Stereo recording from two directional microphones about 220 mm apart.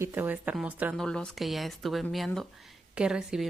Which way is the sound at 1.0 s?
5° left (ahead or behind).